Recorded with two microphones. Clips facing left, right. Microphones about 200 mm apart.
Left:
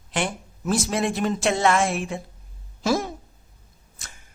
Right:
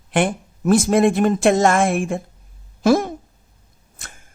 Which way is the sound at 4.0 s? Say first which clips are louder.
Right 4 dB; 60° right (ahead or behind).